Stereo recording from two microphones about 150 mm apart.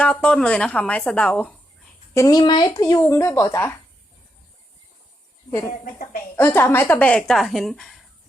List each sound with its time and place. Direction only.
0.0 s speech: 5° left (ahead or behind)
2.1 s speech: 25° left (ahead or behind)
6.3 s speech: 15° left (ahead or behind)